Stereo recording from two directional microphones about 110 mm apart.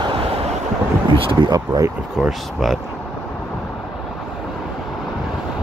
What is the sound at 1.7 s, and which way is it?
Speech, 30° right (ahead or behind).